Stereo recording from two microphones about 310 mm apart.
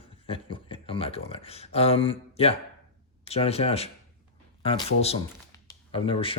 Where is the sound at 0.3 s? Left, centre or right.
Centre.